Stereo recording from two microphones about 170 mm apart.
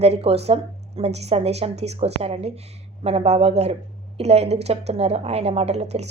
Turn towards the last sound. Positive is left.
turn(degrees=-40)  # may be behind; listen again after turning